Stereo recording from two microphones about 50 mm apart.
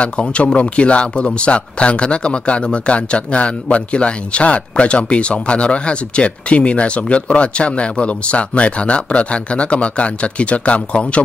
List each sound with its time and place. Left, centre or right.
0.0 s speech: left